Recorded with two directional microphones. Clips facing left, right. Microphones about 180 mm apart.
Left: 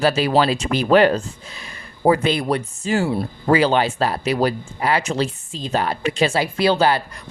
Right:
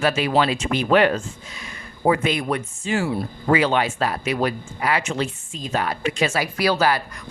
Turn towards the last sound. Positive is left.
turn(degrees=25)  # may be behind; listen again after turning